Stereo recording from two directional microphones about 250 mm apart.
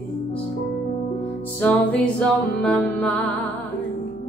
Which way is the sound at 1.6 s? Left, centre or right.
Centre.